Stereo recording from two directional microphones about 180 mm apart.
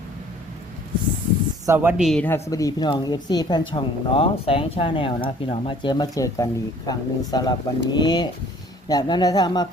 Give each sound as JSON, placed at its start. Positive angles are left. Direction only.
{"t": 1.6, "sound": "a woman's voice", "side_deg": -10}
{"t": 2.2, "sound": "a woman's voice", "side_deg": 15}